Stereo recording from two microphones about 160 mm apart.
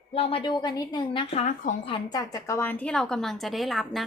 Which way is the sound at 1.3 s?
45° left (ahead or behind).